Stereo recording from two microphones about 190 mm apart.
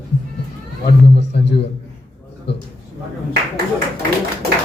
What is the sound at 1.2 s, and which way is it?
Speech, 65° left (ahead or behind).